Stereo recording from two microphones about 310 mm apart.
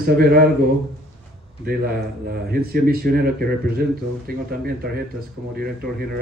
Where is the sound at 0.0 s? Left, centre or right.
Right.